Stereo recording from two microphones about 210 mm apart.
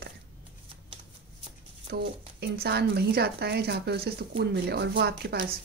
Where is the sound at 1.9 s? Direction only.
50° right (ahead or behind).